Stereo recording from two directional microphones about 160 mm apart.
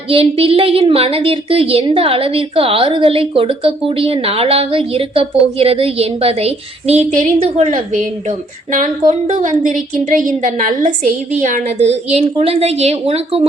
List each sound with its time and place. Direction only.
0.1 s speech: 35° right (ahead or behind)
9.2 s a woman's voice: 55° right (ahead or behind)